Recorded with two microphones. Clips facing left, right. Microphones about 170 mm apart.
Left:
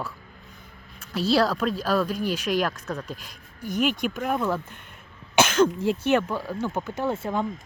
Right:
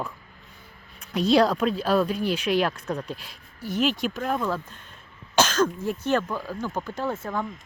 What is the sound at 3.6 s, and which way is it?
Speech, 50° left (ahead or behind).